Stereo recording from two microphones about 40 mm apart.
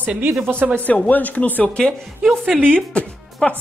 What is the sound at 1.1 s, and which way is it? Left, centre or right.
Speech, left.